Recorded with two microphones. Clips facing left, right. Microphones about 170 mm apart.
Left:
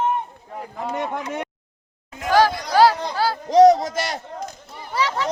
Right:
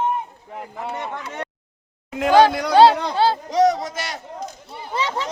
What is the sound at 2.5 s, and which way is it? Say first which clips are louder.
Speech: right 5 dB; 65° right (ahead or behind).